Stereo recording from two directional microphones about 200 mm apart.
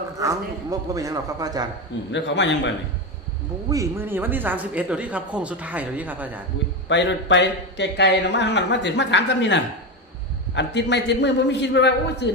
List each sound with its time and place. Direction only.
0.2 s speech: 15° right (ahead or behind)
2.1 s speech: 60° left (ahead or behind)
3.7 s speech: 15° right (ahead or behind)
6.8 s speech: 65° left (ahead or behind)